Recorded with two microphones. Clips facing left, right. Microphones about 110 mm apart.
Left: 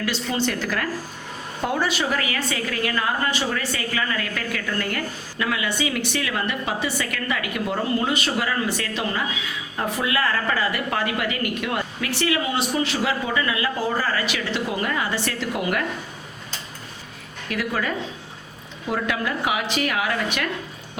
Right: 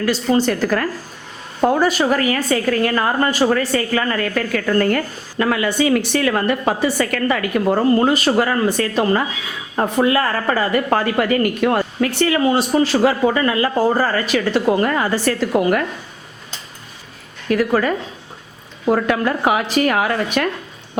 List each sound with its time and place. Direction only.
0.0 s a woman's voice: 40° right (ahead or behind)
17.5 s a woman's voice: 40° right (ahead or behind)